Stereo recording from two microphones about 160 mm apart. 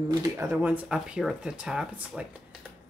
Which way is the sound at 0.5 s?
5° right (ahead or behind).